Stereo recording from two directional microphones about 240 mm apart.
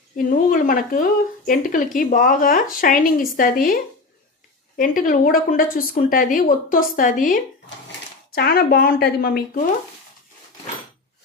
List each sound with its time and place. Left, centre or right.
0.2 s speech: left
4.8 s speech: left